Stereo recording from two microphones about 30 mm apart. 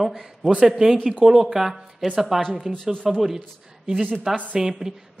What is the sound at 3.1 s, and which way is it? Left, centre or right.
Speech, centre.